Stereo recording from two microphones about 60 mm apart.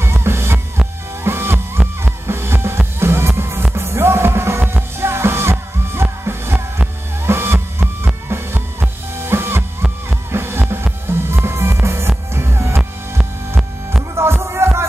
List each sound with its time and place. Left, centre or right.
0.0 s music: right
1.8 s music: centre
2.2 s music: right